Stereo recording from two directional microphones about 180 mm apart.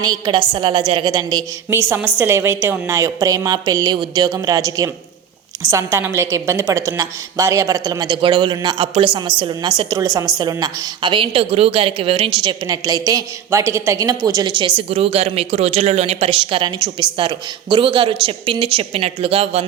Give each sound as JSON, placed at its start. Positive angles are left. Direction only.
{"t": 0.0, "sound": "a woman's voice", "side_deg": -20}